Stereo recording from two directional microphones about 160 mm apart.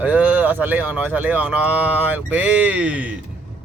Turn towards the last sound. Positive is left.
turn(degrees=-5)  # may be behind; listen again after turning